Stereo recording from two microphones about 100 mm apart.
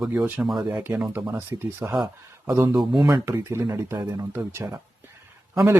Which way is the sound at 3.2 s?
25° right (ahead or behind).